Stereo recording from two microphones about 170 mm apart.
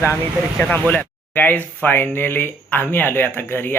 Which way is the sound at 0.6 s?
10° left (ahead or behind).